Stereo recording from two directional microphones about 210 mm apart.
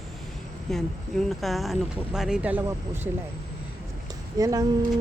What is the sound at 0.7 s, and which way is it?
Speech, centre (ahead or behind).